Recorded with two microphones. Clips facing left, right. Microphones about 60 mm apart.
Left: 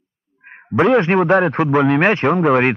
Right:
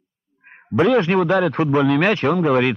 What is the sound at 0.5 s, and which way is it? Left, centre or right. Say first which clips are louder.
A man's voice: left 2 dB; left.